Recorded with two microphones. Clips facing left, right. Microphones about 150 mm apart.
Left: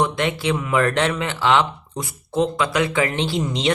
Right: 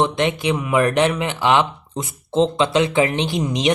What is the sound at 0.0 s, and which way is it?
Speech, 20° right (ahead or behind).